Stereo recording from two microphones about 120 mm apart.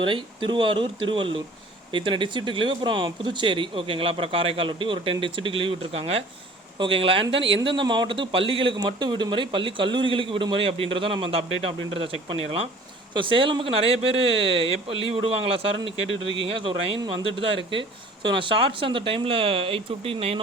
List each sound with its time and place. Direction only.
0.0 s speech: 40° right (ahead or behind)